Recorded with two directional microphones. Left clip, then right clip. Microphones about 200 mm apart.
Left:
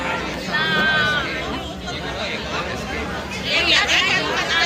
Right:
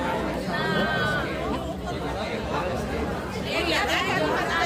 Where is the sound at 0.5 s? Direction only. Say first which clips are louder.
Left 8 dB; 30° right (ahead or behind).